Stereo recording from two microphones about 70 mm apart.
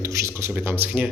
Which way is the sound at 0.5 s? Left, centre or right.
Right.